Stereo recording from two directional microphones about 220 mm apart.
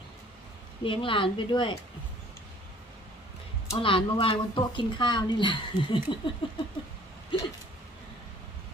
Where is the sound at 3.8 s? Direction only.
25° left (ahead or behind).